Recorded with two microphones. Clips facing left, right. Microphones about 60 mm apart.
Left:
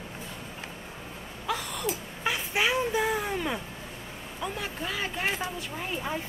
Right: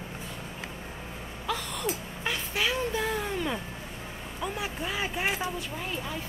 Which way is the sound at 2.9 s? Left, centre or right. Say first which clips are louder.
Left 2 dB; centre.